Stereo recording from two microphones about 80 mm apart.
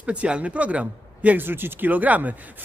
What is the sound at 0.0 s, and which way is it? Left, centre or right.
A man's voice, centre.